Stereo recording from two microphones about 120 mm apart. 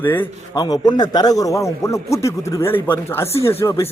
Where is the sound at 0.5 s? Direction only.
35° left (ahead or behind).